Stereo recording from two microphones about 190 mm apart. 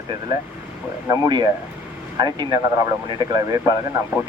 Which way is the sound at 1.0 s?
20° right (ahead or behind).